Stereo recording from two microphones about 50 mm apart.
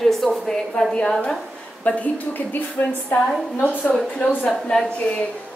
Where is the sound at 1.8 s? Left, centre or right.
Left.